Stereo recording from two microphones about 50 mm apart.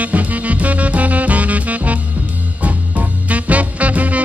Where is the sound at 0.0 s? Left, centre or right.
Right.